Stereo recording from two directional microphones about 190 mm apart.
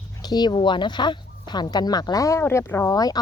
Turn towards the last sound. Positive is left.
turn(degrees=20)  # may be behind; listen again after turning